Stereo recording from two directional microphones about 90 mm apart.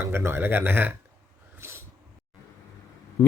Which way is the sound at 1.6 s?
30° right (ahead or behind).